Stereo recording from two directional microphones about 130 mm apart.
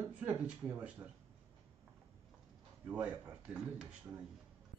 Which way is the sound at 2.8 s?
10° right (ahead or behind).